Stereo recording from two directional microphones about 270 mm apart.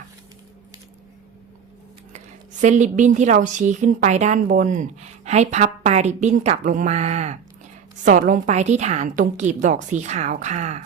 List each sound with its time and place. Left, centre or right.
2.1 s a woman's voice: right